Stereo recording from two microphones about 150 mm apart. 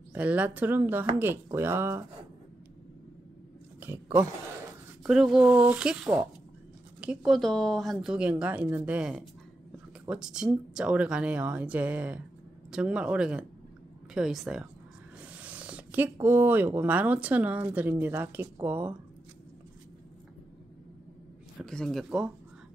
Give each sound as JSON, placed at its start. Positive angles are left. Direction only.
{"t": 0.1, "sound": "speech", "side_deg": -10}
{"t": 3.8, "sound": "speech", "side_deg": -15}
{"t": 5.0, "sound": "speech", "side_deg": -5}
{"t": 21.5, "sound": "speech", "side_deg": 5}